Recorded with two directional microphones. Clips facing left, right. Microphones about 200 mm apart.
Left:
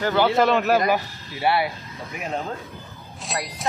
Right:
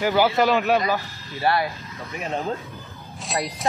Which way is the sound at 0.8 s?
10° left (ahead or behind).